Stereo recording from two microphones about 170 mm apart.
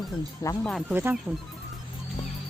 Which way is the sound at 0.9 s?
10° right (ahead or behind).